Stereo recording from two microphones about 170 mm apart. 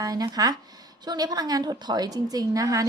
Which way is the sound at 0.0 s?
20° right (ahead or behind).